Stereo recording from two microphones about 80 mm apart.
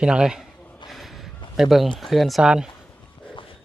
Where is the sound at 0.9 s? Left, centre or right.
Centre.